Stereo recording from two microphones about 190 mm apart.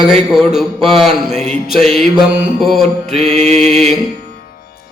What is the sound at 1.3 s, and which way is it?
Mantra, 35° right (ahead or behind).